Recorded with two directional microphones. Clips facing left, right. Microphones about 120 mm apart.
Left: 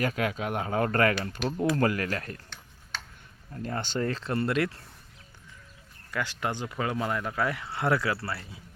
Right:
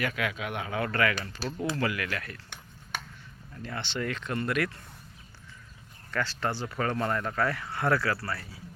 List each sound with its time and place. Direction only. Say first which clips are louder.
0.0 s speech: left 3 dB; 40° left (ahead or behind)
1.4 s speech: left 5 dB; 35° right (ahead or behind)
1.7 s speech: left 4 dB; 45° left (ahead or behind)
2.9 s a sound: right 2 dB; 15° right (ahead or behind)
3.5 s speech: left 4 dB; 40° left (ahead or behind); by 4.7 s 25° left (ahead or behind)
6.1 s speech: right 1 dB; 15° left (ahead or behind)